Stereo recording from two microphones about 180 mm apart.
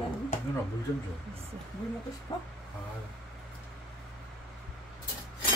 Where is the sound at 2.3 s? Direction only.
20° left (ahead or behind).